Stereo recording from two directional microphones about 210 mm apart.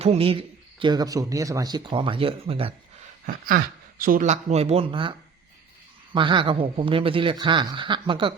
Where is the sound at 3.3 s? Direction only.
45° right (ahead or behind).